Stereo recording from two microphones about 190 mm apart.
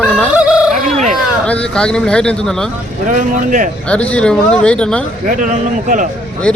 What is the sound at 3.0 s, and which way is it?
Speech, 45° right (ahead or behind).